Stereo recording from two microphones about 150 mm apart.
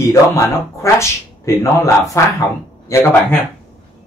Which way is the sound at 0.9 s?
20° left (ahead or behind).